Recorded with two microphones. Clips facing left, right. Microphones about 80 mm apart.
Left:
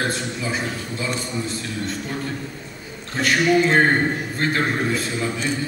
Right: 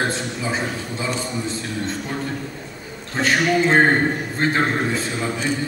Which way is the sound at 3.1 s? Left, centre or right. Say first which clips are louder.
Left 1 dB; right.